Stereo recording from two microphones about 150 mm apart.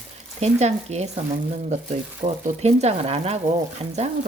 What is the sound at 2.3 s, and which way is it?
Speech, 45° right (ahead or behind).